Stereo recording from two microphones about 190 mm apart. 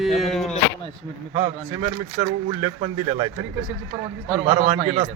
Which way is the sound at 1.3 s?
25° right (ahead or behind).